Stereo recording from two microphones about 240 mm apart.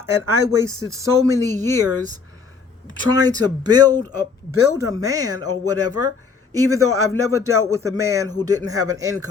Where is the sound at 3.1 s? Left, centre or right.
Centre.